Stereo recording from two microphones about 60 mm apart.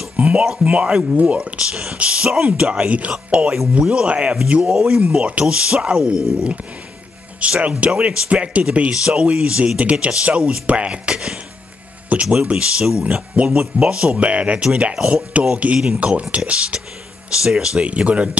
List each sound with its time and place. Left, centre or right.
0.1 s speech: centre
4.7 s speech: centre
5.1 s speech: right